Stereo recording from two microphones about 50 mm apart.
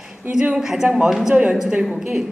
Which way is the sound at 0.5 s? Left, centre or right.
Centre.